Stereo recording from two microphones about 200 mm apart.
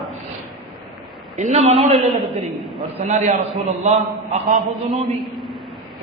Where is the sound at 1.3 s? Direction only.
35° right (ahead or behind).